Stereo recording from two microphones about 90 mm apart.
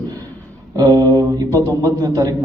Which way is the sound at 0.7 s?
45° right (ahead or behind).